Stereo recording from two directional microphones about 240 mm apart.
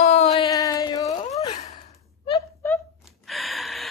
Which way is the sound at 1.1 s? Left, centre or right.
Left.